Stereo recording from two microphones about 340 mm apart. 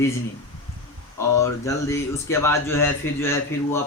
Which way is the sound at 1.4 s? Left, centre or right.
Centre.